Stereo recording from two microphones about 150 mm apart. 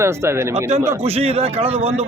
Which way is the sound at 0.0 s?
20° right (ahead or behind).